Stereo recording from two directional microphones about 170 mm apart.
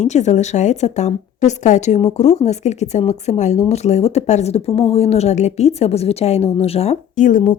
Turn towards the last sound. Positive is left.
turn(degrees=45)  # may be behind; listen again after turning